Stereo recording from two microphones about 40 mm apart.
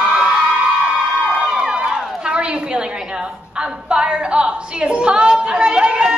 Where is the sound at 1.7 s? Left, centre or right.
Right.